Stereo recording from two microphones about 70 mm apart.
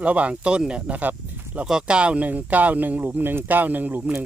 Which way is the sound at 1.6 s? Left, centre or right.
Centre.